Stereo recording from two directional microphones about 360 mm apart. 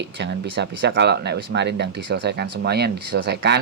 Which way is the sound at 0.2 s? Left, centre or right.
Right.